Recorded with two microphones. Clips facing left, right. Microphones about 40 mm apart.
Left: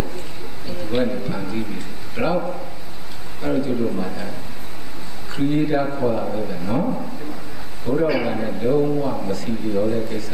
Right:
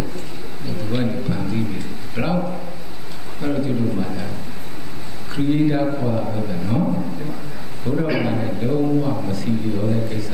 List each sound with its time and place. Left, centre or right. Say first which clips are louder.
0.8 s a man's voice: left 1 dB; centre
5.3 s a man's voice: right 1 dB; centre